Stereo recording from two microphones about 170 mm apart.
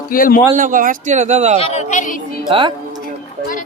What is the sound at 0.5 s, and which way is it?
Speech, 50° right (ahead or behind).